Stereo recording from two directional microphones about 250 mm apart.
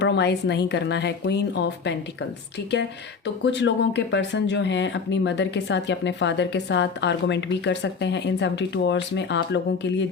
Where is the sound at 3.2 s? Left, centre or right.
Left.